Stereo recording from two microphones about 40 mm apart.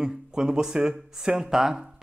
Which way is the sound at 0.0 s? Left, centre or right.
Centre.